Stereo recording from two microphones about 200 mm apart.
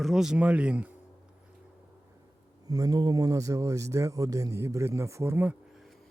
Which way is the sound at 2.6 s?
20° right (ahead or behind).